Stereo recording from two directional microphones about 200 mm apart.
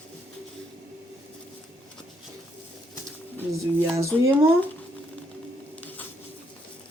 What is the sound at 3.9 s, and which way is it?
Speech, 15° right (ahead or behind).